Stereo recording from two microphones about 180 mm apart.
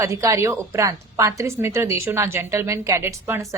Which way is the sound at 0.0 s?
15° right (ahead or behind).